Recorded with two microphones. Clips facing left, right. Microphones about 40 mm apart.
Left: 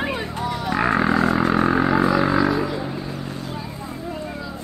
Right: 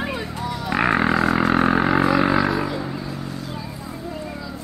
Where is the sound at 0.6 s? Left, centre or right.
Right.